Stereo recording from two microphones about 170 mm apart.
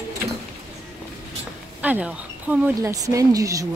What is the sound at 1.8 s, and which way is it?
Speech, 10° right (ahead or behind).